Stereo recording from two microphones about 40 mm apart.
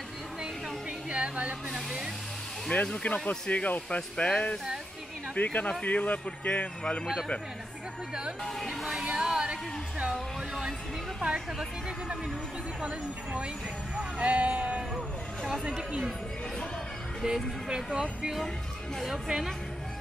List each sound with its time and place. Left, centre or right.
1.1 s a sound: right
1.7 s hair dryer: centre
2.7 s speech: left
9.0 s speech: right
10.1 s speech: centre
12.8 s speech: right
17.2 s speech: centre
19.0 s speech: centre